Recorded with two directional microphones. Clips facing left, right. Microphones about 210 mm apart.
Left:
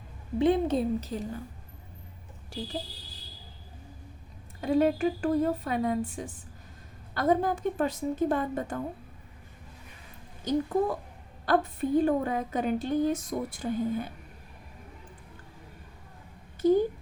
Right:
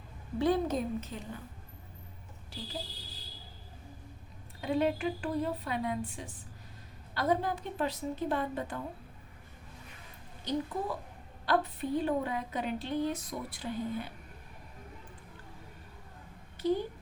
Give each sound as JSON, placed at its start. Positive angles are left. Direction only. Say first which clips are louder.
{"t": 0.3, "sound": "a woman's voice", "louder": "left 5 dB", "side_deg": 25}
{"t": 4.6, "sound": "a woman's voice", "louder": "left 6 dB", "side_deg": 45}
{"t": 10.4, "sound": "a woman's voice", "louder": "left 7 dB", "side_deg": 45}
{"t": 16.6, "sound": "a sound", "louder": "left 8 dB", "side_deg": 45}